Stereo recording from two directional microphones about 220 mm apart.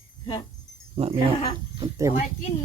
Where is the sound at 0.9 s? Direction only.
25° right (ahead or behind).